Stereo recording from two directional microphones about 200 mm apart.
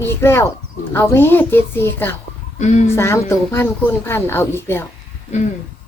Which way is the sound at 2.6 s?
35° left (ahead or behind).